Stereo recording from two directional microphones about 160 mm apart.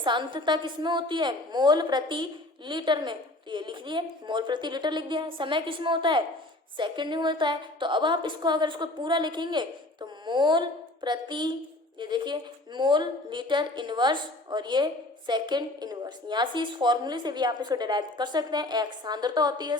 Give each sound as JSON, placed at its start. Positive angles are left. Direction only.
{"t": 0.0, "sound": "a woman's voice", "side_deg": -30}